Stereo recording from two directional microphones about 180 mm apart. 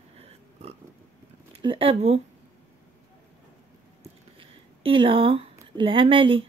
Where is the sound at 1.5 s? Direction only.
30° right (ahead or behind).